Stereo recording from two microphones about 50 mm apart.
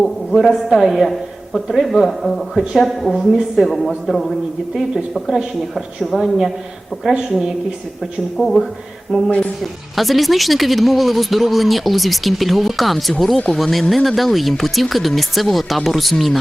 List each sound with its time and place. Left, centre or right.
0.0 s speech: centre
8.4 s speech: centre